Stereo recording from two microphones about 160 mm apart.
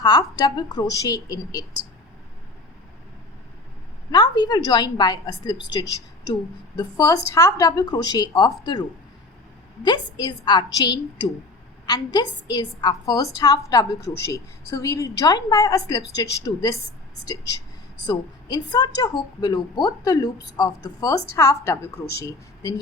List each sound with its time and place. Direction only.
0.0 s a woman's voice: 25° left (ahead or behind)
4.1 s a woman's voice: 25° left (ahead or behind)
9.8 s a woman's voice: 25° left (ahead or behind)
18.0 s a woman's voice: 25° left (ahead or behind)